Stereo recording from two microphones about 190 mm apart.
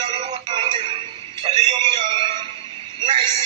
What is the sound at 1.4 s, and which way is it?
Music, 25° right (ahead or behind).